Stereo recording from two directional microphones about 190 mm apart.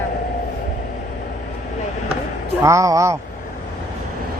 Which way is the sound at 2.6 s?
15° right (ahead or behind).